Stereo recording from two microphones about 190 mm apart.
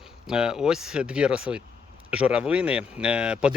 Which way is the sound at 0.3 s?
5° right (ahead or behind).